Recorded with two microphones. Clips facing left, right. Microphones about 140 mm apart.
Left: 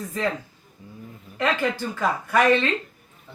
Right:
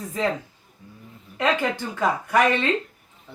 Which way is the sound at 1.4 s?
20° right (ahead or behind).